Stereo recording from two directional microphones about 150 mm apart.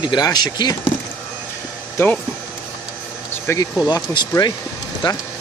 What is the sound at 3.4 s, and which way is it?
Speech, 20° left (ahead or behind).